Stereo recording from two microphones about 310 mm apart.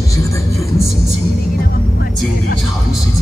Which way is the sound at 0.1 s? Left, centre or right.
Centre.